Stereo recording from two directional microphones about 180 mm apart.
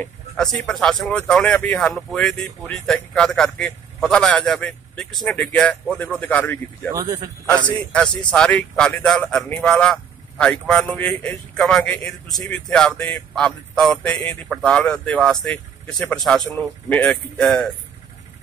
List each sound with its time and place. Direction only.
0.0 s speech: 5° left (ahead or behind)
6.9 s speech: 20° right (ahead or behind)
7.9 s speech: 5° left (ahead or behind)